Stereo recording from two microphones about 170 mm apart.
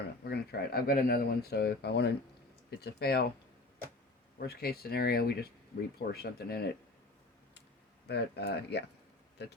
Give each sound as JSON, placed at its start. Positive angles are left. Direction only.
{"t": 0.3, "sound": "speech", "side_deg": 65}
{"t": 4.4, "sound": "speech", "side_deg": 65}
{"t": 8.0, "sound": "speech", "side_deg": 75}